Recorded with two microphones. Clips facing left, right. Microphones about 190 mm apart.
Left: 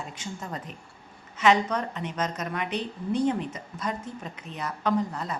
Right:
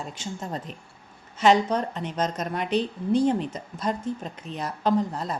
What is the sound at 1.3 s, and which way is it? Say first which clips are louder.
A woman's voice: right 3 dB; 35° right (ahead or behind).